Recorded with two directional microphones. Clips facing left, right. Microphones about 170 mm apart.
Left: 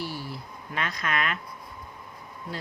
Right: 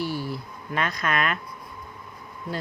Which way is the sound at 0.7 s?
45° right (ahead or behind).